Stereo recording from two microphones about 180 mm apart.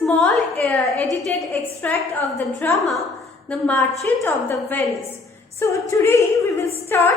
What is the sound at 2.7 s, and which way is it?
A woman's voice, centre (ahead or behind).